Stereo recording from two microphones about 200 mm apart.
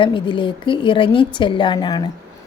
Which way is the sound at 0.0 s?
25° left (ahead or behind).